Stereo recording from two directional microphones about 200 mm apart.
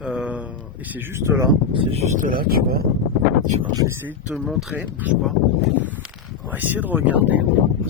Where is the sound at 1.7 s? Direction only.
35° right (ahead or behind).